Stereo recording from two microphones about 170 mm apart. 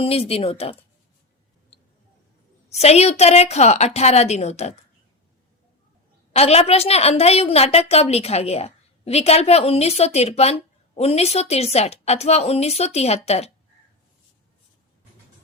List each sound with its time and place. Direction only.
0.0 s a woman's voice: 35° left (ahead or behind)
2.6 s a woman's voice: 40° left (ahead or behind)
6.3 s a woman's voice: 40° left (ahead or behind)